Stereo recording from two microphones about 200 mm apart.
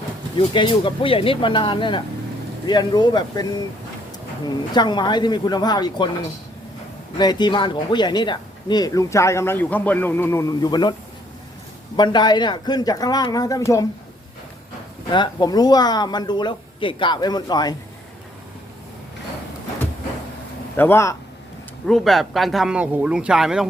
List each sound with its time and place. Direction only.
0.3 s speech: 25° left (ahead or behind)
4.4 s speech: 20° left (ahead or behind)
7.2 s speech: 20° left (ahead or behind)
11.9 s speech: 20° left (ahead or behind)
15.1 s speech: 20° left (ahead or behind)
20.7 s speech: 10° left (ahead or behind)
21.8 s a man's voice: centre (ahead or behind)